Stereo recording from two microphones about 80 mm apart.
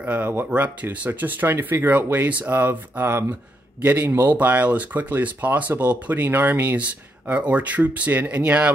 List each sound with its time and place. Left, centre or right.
0.0 s speech: right